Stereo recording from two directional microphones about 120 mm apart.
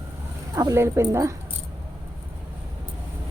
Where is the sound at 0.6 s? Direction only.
25° right (ahead or behind).